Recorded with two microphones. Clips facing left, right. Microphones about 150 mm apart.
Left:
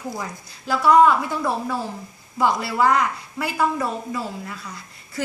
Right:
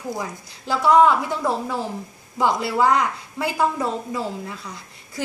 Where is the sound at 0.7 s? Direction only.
20° right (ahead or behind).